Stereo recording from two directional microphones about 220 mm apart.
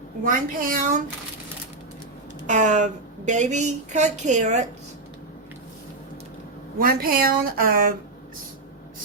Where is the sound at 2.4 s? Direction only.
35° right (ahead or behind).